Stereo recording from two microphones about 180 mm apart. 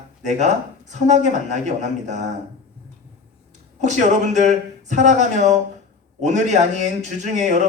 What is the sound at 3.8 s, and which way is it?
Speech, 40° right (ahead or behind).